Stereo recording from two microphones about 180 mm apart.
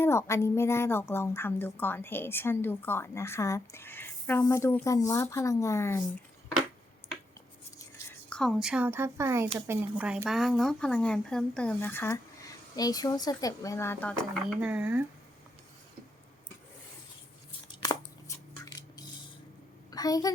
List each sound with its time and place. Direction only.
0.0 s a woman's voice: 15° left (ahead or behind)
8.3 s a woman's voice: centre (ahead or behind)
14.6 s a woman's voice: 10° right (ahead or behind)
17.7 s a sound: 25° left (ahead or behind)
19.9 s a woman's voice: 20° left (ahead or behind)